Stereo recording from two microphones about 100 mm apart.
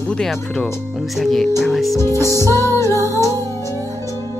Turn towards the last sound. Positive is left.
turn(degrees=30)  # may be behind; listen again after turning